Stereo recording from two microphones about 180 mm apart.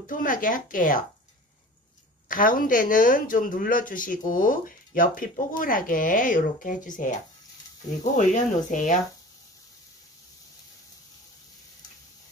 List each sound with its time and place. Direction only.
0.0 s speech: 50° left (ahead or behind)
2.2 s speech: 50° left (ahead or behind)